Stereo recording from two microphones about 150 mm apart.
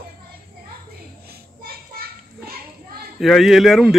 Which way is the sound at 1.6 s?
90° right.